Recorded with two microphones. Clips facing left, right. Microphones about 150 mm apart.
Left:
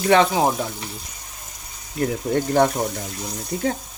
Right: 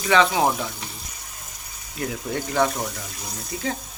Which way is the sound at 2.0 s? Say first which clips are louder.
Left 6 dB; 45° left (ahead or behind).